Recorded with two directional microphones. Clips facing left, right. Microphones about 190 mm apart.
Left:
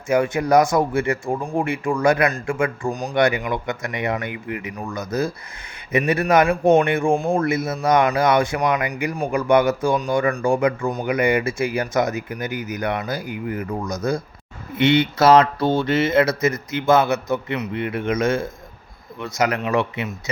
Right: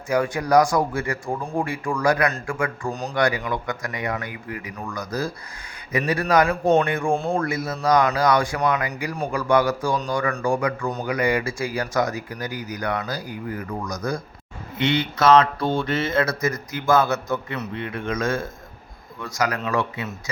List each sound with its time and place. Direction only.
0.1 s speech: 25° left (ahead or behind)
2.9 s speech: 10° left (ahead or behind)
3.2 s speech: 20° left (ahead or behind)